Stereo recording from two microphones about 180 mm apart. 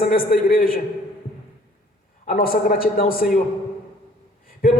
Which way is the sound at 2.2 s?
55° left (ahead or behind).